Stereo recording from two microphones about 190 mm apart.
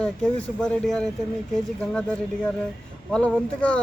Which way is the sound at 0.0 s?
5° left (ahead or behind).